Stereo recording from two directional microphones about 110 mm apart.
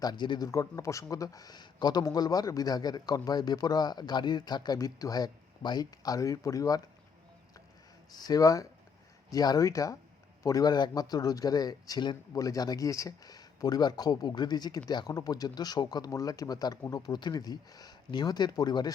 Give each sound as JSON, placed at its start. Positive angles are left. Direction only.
{"t": 0.0, "sound": "a man's voice", "side_deg": 40}
{"t": 0.4, "sound": "a man's voice", "side_deg": 30}
{"t": 8.1, "sound": "a man's voice", "side_deg": 35}